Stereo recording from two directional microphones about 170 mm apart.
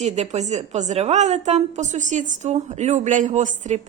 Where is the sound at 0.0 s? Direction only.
40° right (ahead or behind).